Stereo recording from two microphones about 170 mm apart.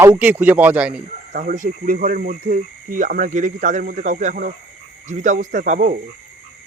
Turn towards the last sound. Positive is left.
turn(degrees=-45)  # may be behind; listen again after turning